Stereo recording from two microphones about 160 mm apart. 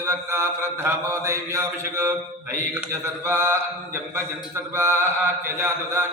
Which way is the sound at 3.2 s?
15° right (ahead or behind).